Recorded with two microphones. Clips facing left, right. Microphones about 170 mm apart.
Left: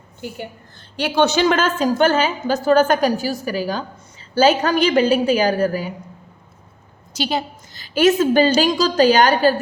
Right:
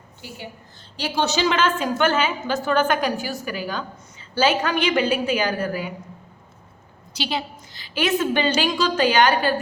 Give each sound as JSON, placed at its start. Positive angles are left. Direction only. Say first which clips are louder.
{"t": 0.9, "sound": "a woman's voice", "louder": "left 6 dB", "side_deg": 60}
{"t": 7.1, "sound": "a woman's voice", "louder": "left 5 dB", "side_deg": 45}